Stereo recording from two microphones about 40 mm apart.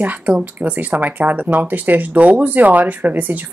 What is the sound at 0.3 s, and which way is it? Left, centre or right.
Speech, right.